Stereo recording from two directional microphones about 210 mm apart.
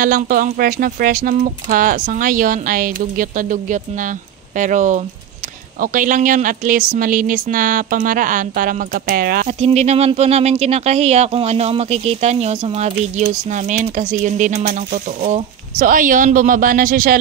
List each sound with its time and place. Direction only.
0.0 s speech: 40° right (ahead or behind)
9.5 s speech: 30° right (ahead or behind)